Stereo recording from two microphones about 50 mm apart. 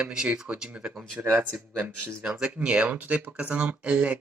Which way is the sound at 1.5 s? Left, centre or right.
Right.